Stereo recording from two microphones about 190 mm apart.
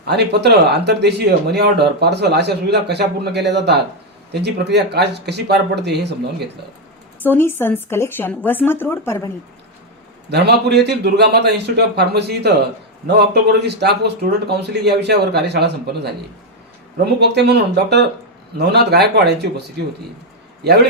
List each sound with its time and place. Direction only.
0.1 s speech: 60° right (ahead or behind)
7.2 s speech: 10° left (ahead or behind)
10.2 s speech: 60° right (ahead or behind)
17.2 s speech: 60° right (ahead or behind)